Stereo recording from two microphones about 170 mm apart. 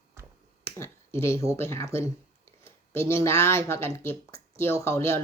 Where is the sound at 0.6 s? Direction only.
15° left (ahead or behind).